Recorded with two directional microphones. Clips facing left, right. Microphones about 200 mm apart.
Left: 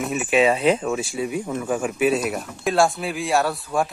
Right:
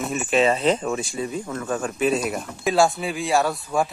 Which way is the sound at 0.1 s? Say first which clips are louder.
Left 1 dB; 5° left (ahead or behind).